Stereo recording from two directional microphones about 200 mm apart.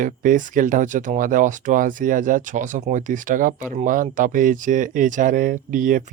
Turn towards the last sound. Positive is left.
turn(degrees=-40)  # may be behind; listen again after turning